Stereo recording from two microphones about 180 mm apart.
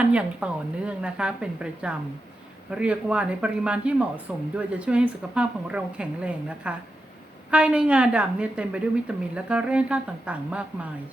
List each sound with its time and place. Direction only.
0.0 s a woman's voice: 5° right (ahead or behind)